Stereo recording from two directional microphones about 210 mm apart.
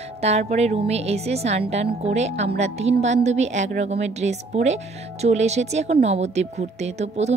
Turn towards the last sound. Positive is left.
turn(degrees=-30)  # may be behind; listen again after turning